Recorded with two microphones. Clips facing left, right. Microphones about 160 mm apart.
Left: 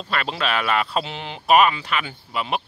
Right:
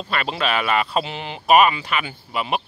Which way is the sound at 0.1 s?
5° right (ahead or behind).